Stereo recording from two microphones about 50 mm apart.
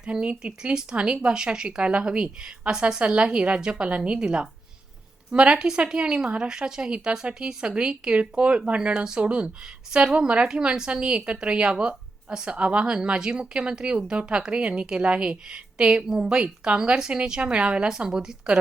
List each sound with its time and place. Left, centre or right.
0.0 s a woman's voice: right